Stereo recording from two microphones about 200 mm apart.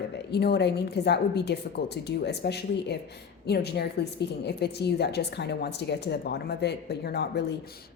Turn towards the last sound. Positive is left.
turn(degrees=55)  # may be behind; listen again after turning